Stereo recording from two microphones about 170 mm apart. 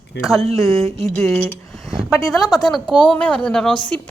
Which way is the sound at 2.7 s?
Centre (ahead or behind).